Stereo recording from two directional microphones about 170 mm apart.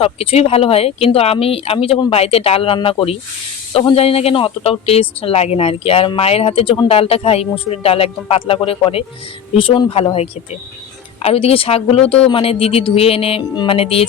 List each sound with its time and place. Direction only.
0.0 s speech: 35° left (ahead or behind)